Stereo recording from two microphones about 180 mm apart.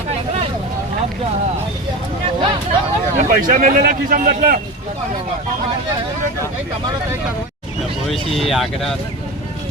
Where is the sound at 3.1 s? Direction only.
45° right (ahead or behind).